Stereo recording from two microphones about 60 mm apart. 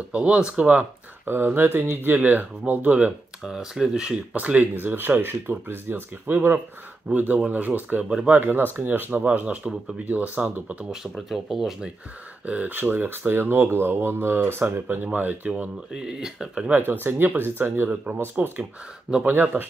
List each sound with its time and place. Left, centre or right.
0.1 s speech: centre
1.2 s speech: right
3.4 s speech: centre
4.4 s speech: right
8.0 s speech: centre
8.3 s speech: right
11.2 s speech: centre
12.6 s speech: right
15.1 s speech: right
15.5 s speech: centre
16.7 s speech: right
17.8 s speech: right
18.6 s speech: centre
19.2 s speech: right